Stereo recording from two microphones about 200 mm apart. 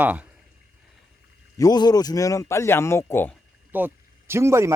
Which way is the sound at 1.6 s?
20° left (ahead or behind).